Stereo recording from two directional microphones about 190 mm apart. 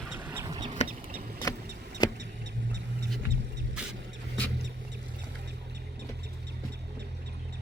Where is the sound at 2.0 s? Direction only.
20° left (ahead or behind).